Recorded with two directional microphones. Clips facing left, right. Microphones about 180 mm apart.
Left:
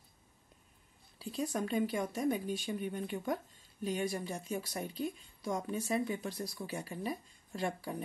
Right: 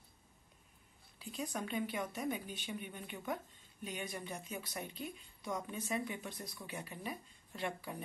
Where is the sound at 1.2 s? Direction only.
35° left (ahead or behind).